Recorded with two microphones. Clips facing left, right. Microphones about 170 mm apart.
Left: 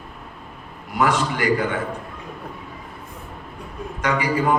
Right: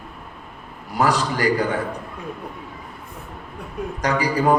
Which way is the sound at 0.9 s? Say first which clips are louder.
Even; 35° right (ahead or behind).